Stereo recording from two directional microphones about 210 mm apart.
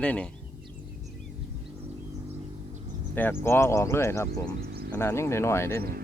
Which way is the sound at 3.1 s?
10° left (ahead or behind).